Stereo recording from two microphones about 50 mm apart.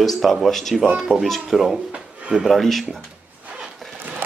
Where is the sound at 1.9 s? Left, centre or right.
Centre.